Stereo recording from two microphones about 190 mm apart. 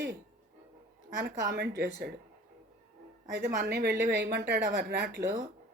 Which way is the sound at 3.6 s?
60° right (ahead or behind).